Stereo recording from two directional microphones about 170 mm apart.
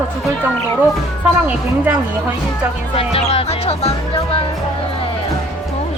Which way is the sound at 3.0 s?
35° left (ahead or behind).